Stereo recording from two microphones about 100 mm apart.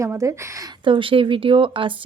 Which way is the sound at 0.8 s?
55° right (ahead or behind).